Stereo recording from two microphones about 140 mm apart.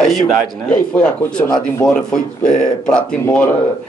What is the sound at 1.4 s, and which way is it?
Speech, 25° left (ahead or behind).